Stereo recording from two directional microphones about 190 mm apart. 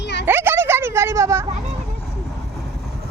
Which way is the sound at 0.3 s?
10° right (ahead or behind).